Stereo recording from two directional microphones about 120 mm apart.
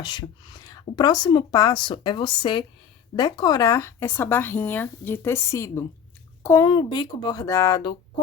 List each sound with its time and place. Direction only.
0.0 s a child's voice: 40° left (ahead or behind)
6.7 s speech: 40° left (ahead or behind)